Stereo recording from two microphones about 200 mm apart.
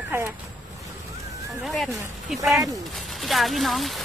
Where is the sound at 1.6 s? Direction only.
Centre (ahead or behind).